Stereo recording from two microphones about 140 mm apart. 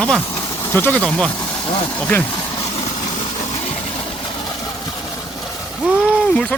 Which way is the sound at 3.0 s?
30° left (ahead or behind).